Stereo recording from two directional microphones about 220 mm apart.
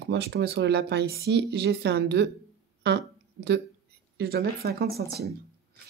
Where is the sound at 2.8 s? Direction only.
50° right (ahead or behind).